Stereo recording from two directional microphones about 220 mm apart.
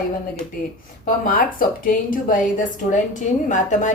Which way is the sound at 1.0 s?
40° left (ahead or behind).